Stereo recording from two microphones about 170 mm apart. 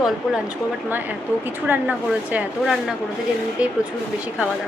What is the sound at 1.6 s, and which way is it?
Speech, 10° right (ahead or behind).